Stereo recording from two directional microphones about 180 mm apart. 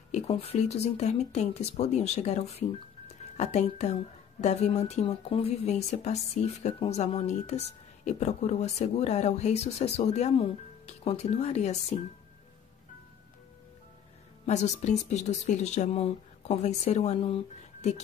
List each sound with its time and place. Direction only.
0.1 s speech: 35° left (ahead or behind)
3.1 s music: 40° left (ahead or behind)
4.4 s speech: 35° left (ahead or behind)
14.4 s speech: 40° left (ahead or behind)